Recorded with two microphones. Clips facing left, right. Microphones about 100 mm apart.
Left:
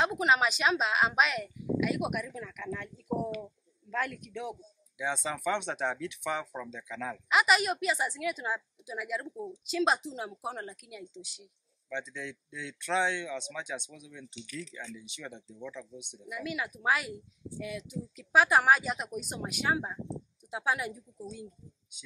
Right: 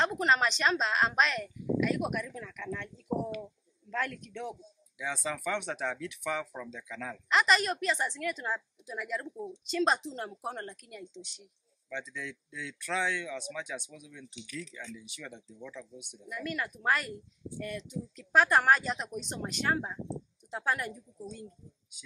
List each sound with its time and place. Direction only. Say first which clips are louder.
0.0 s speech: left 1 dB; 5° left (ahead or behind)
4.9 s speech: left 2 dB; 25° left (ahead or behind)
7.2 s a woman's voice: left 1 dB; 5° left (ahead or behind)
11.9 s speech: left 1 dB; 25° left (ahead or behind)
16.3 s a woman's voice: even; 5° left (ahead or behind)